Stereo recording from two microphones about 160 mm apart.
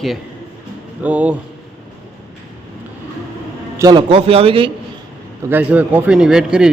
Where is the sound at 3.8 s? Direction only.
30° right (ahead or behind).